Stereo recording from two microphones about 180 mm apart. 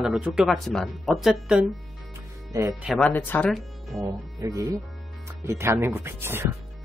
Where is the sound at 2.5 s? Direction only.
15° right (ahead or behind).